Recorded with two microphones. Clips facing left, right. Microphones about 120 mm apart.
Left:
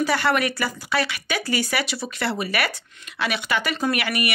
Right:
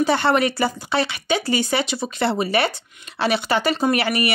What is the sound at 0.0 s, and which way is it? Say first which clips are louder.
Speech: right 3 dB; 25° right (ahead or behind).